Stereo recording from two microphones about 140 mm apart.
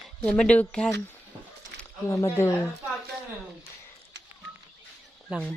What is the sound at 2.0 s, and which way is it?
Speech, 20° left (ahead or behind).